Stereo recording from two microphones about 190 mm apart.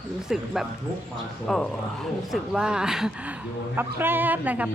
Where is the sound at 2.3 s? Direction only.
5° right (ahead or behind).